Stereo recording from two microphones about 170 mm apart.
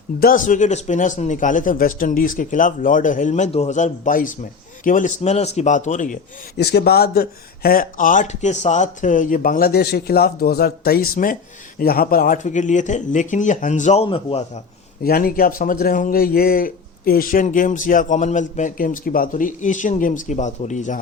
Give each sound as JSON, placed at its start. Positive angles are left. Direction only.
{"t": 0.2, "sound": "a man's voice", "side_deg": 55}
{"t": 6.6, "sound": "a man's voice", "side_deg": 75}
{"t": 15.0, "sound": "a man's voice", "side_deg": 60}